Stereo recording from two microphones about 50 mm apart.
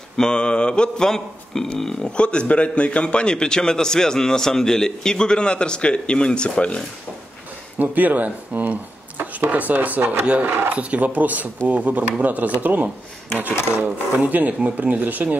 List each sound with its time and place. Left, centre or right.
0.2 s a man's voice: centre
2.1 s a man's voice: left
7.8 s speech: right
10.4 s speech: right
10.7 s speech: right